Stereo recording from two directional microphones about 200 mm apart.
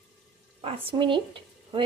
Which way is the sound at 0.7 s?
25° right (ahead or behind).